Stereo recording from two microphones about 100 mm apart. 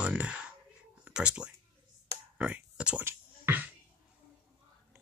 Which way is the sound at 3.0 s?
20° right (ahead or behind).